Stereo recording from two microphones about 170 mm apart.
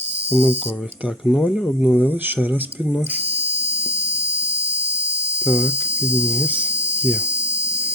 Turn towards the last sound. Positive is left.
turn(degrees=-75)  # may be behind; listen again after turning